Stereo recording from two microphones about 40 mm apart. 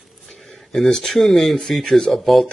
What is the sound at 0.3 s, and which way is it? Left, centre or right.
Speech, centre.